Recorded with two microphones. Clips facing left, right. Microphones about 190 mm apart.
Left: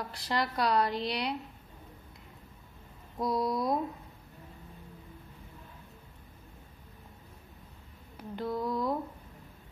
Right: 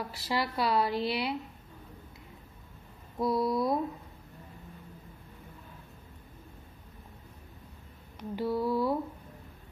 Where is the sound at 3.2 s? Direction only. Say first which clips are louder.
Right 2 dB; centre (ahead or behind).